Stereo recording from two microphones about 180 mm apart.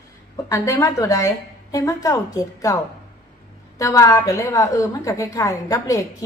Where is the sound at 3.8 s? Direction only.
20° left (ahead or behind).